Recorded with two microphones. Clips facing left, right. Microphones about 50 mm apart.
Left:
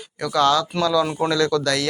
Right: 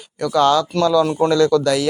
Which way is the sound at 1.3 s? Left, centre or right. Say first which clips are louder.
Right 5 dB; centre.